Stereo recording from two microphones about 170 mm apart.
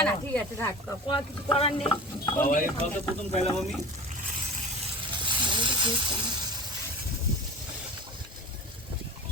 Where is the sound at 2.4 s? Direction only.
55° left (ahead or behind).